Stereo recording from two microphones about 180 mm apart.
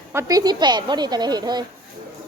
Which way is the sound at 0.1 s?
15° right (ahead or behind).